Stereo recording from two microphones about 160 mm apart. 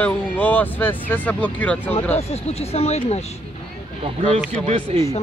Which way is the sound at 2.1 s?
40° left (ahead or behind).